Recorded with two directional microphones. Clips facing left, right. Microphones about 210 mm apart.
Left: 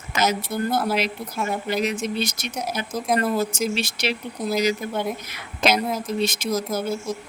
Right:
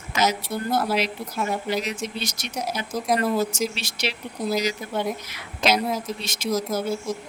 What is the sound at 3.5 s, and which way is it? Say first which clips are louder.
Speech: left 3 dB; 50° left (ahead or behind).